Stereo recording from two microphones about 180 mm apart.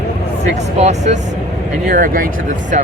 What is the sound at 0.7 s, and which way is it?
Speech, 40° right (ahead or behind).